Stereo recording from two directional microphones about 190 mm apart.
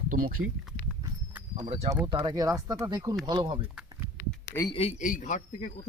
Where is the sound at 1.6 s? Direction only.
35° right (ahead or behind).